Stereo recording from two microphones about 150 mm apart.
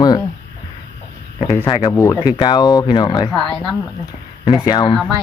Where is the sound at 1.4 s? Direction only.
20° left (ahead or behind).